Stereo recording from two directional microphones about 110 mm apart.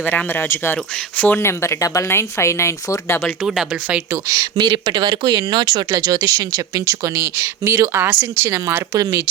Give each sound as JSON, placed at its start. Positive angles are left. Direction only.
{"t": 0.0, "sound": "speech", "side_deg": 15}
{"t": 3.4, "sound": "speech", "side_deg": -5}
{"t": 4.1, "sound": "speech", "side_deg": -25}
{"t": 4.5, "sound": "speech", "side_deg": -40}